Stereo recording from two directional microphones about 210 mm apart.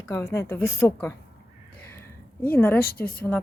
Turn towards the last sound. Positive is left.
turn(degrees=45)  # may be behind; listen again after turning